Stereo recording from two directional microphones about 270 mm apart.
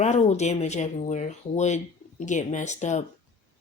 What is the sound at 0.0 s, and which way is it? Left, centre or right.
Speech, left.